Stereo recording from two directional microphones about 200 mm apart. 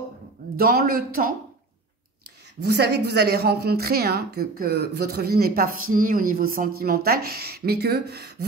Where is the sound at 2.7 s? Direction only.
55° right (ahead or behind).